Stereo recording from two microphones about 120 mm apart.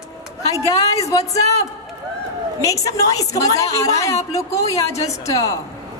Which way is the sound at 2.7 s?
25° left (ahead or behind).